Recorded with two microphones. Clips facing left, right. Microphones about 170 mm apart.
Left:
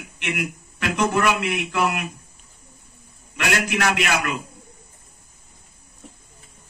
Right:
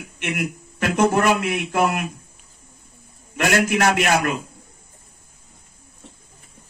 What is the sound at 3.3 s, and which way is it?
Speech, 45° right (ahead or behind).